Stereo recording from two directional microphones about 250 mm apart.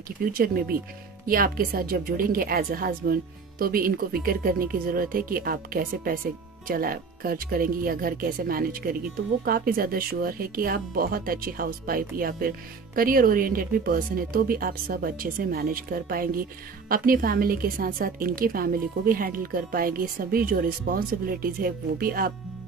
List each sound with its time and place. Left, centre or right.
0.2 s a woman's voice: right